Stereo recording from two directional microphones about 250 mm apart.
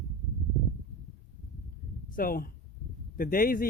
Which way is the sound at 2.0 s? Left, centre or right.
Left.